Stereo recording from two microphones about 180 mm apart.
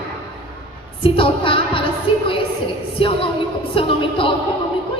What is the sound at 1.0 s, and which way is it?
Music, 30° left (ahead or behind).